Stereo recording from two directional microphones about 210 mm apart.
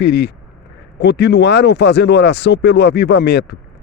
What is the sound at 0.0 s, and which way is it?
Speech, 50° left (ahead or behind).